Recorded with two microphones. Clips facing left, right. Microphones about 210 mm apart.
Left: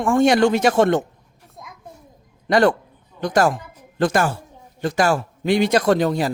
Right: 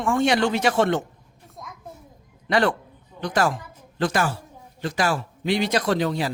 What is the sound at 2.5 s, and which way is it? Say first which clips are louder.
A man's voice: left 5 dB; 45° left (ahead or behind).